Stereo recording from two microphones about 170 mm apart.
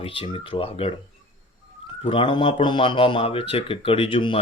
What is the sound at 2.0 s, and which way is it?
Speech, 30° left (ahead or behind).